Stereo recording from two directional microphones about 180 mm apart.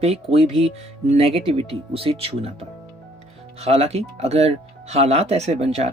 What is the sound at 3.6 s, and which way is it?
Speech, 35° right (ahead or behind).